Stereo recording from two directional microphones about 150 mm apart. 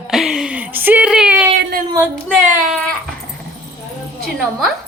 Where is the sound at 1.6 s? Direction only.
90° right.